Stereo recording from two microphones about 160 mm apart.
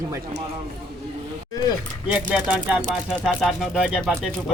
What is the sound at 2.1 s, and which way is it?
Speech, 5° right (ahead or behind).